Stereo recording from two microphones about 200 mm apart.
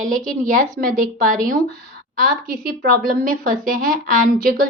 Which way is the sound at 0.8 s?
45° right (ahead or behind).